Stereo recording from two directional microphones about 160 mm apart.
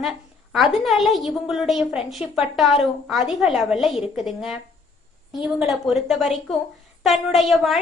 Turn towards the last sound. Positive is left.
turn(degrees=0)  # may be behind; listen again after turning